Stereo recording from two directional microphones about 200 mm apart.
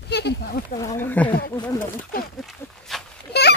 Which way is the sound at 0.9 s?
10° left (ahead or behind).